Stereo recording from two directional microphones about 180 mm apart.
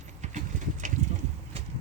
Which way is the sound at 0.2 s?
40° right (ahead or behind).